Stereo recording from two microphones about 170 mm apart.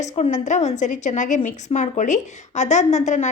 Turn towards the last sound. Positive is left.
turn(degrees=45)  # may be behind; listen again after turning